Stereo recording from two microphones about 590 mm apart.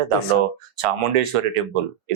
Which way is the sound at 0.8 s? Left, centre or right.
Right.